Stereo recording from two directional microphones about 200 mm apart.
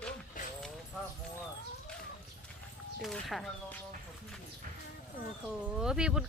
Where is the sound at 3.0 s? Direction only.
Centre (ahead or behind).